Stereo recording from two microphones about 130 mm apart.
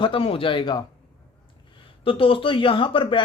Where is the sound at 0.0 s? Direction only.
45° left (ahead or behind).